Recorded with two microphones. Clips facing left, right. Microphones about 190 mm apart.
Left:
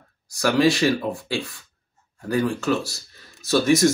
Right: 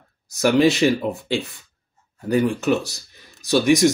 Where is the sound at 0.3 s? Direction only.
20° right (ahead or behind).